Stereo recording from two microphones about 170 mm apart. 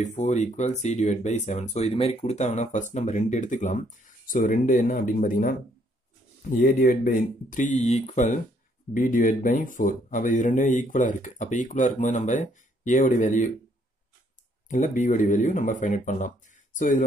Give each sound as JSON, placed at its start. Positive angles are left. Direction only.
{"t": 0.0, "sound": "speech", "side_deg": 40}
{"t": 14.7, "sound": "speech", "side_deg": 50}